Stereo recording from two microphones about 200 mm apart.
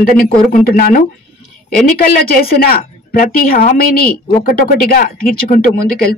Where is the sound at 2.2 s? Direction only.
50° left (ahead or behind).